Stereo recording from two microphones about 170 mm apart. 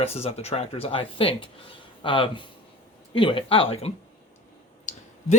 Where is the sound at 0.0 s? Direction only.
35° left (ahead or behind).